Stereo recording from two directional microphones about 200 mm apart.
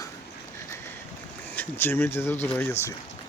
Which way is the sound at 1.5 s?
10° left (ahead or behind).